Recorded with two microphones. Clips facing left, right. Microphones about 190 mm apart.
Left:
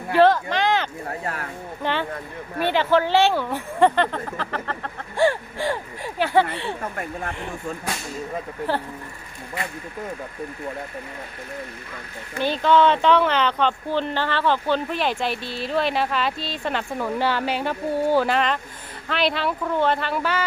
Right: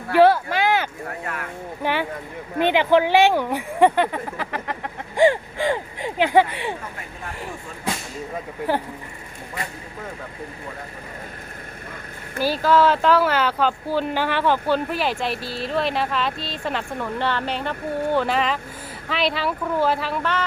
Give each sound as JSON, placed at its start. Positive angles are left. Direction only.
{"t": 0.2, "sound": "a sound", "side_deg": -10}
{"t": 1.2, "sound": "speech", "side_deg": 35}
{"t": 1.8, "sound": "speech", "side_deg": -10}
{"t": 12.4, "sound": "speech", "side_deg": -5}